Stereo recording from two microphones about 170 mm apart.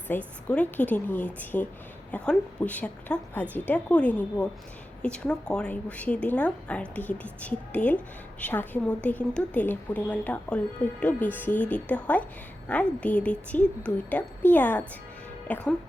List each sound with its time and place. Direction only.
0.1 s a woman's voice: 10° left (ahead or behind)